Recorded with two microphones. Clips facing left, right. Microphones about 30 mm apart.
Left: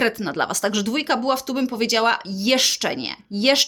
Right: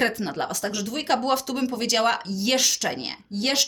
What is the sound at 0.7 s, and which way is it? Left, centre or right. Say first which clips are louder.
Speech: left 7 dB; left.